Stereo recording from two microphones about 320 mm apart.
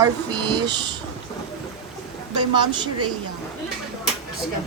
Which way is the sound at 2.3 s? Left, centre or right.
Centre.